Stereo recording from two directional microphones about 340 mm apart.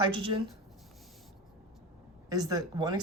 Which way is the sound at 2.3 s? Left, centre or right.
Centre.